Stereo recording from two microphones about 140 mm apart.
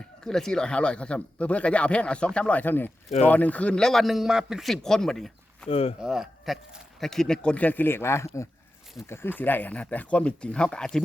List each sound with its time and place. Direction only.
0.0 s a man's voice: 5° left (ahead or behind)
5.6 s speech: 45° left (ahead or behind)
6.0 s a man's voice: 5° right (ahead or behind)